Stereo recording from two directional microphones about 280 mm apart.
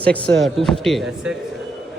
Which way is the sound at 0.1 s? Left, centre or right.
Centre.